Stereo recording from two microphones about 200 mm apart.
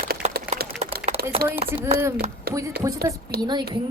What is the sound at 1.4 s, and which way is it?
Speech, 50° right (ahead or behind).